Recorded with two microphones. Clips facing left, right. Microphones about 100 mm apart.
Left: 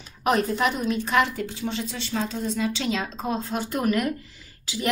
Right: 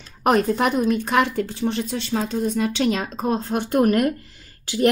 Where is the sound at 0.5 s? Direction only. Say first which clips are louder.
Right 5 dB; 45° right (ahead or behind).